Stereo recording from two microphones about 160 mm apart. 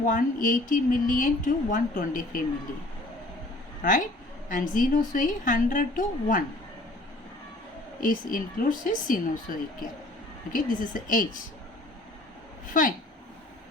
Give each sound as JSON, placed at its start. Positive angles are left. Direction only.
{"t": 0.0, "sound": "a woman's voice", "side_deg": 55}
{"t": 3.8, "sound": "a woman's voice", "side_deg": 55}
{"t": 8.0, "sound": "a woman's voice", "side_deg": 60}
{"t": 12.7, "sound": "a woman's voice", "side_deg": 60}